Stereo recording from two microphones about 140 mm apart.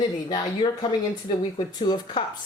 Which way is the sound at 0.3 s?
30° left (ahead or behind).